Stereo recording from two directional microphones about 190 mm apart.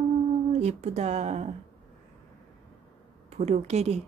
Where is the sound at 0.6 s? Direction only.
35° right (ahead or behind).